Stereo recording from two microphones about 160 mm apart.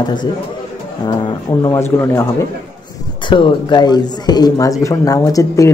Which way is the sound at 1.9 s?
15° left (ahead or behind).